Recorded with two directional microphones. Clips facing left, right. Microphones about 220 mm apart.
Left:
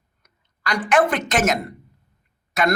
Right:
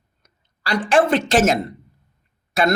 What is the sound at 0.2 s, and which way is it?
Speech, 30° right (ahead or behind).